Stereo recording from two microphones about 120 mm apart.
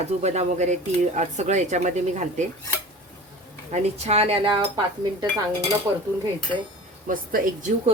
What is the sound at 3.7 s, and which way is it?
Speech, 60° right (ahead or behind).